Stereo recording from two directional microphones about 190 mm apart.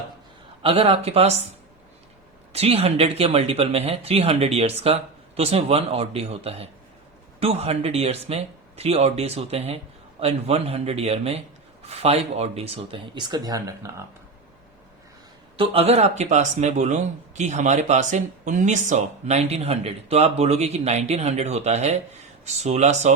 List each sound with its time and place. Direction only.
0.6 s speech: 30° right (ahead or behind)
2.5 s speech: 30° right (ahead or behind)
15.5 s speech: 30° right (ahead or behind)